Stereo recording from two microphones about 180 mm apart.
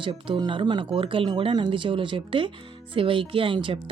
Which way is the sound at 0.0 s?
25° right (ahead or behind).